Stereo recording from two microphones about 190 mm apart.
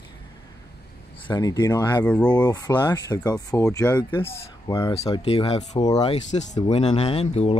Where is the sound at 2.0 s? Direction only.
5° left (ahead or behind).